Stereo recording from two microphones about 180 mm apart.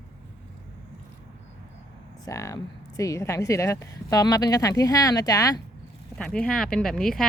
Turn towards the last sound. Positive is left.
turn(degrees=5)  # may be behind; listen again after turning